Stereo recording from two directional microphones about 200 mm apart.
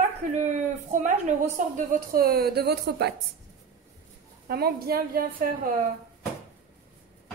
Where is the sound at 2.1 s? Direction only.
50° right (ahead or behind).